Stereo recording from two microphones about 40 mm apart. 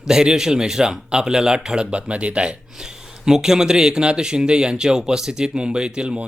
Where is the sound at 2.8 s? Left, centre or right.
Centre.